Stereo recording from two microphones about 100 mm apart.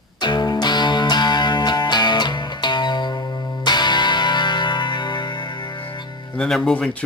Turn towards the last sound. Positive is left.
turn(degrees=15)  # may be behind; listen again after turning